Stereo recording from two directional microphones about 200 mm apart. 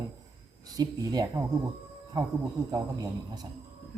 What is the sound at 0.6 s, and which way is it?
Speech, 20° right (ahead or behind).